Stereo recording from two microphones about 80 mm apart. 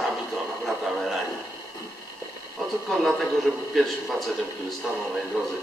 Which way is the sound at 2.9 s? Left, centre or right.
Centre.